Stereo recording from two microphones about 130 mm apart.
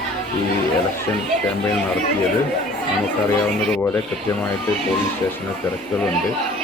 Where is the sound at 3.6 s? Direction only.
5° left (ahead or behind).